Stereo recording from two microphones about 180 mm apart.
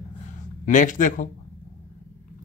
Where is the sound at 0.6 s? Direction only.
45° left (ahead or behind).